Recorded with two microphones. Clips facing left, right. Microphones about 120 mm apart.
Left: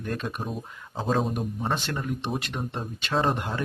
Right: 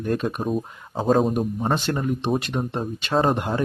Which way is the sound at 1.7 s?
25° right (ahead or behind).